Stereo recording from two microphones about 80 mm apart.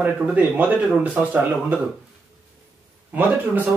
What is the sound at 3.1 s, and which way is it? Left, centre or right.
Speech, right.